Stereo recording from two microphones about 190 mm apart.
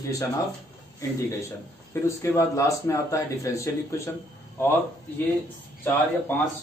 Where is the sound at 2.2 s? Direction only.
15° left (ahead or behind).